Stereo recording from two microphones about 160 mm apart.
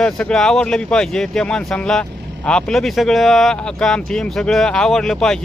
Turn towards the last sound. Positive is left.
turn(degrees=5)  # may be behind; listen again after turning